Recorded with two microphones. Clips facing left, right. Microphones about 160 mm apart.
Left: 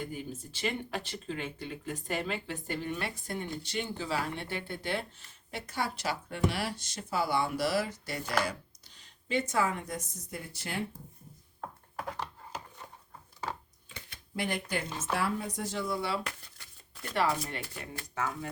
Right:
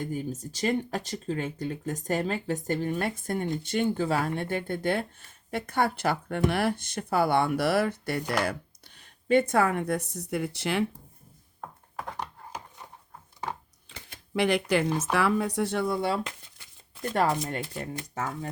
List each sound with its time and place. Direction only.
0.0 s speech: 45° right (ahead or behind); by 10.8 s 80° right
12.1 s a sound: 15° right (ahead or behind)
14.3 s speech: 80° right; by 18.3 s 40° right (ahead or behind)